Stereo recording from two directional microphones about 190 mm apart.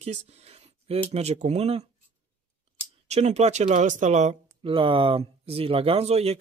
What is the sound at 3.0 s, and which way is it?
Speech, 35° right (ahead or behind).